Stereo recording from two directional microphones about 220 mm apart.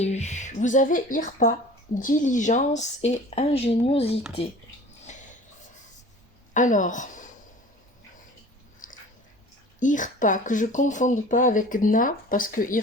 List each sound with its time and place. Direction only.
0.0 s speech: 30° left (ahead or behind)
5.0 s a sound: 35° left (ahead or behind)
6.5 s a woman's voice: 35° left (ahead or behind)
8.8 s biting: 35° left (ahead or behind)
9.8 s speech: 35° left (ahead or behind)